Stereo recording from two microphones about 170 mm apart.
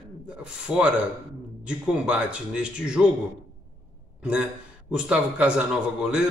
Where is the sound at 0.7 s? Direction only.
5° right (ahead or behind).